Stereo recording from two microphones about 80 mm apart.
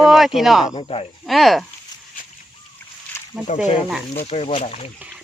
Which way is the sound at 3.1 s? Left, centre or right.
Left.